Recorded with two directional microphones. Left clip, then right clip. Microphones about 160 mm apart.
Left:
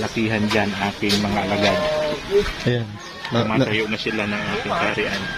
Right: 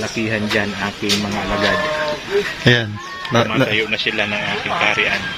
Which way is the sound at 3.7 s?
75° left (ahead or behind).